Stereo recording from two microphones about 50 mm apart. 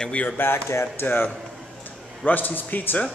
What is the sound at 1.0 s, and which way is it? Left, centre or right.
Speech, left.